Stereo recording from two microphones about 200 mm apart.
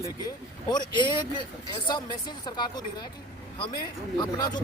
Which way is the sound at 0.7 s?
20° left (ahead or behind).